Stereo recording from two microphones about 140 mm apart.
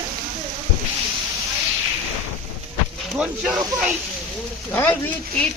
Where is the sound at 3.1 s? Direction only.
5° right (ahead or behind).